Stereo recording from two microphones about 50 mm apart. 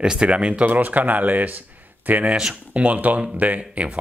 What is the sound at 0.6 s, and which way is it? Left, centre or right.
Speech, right.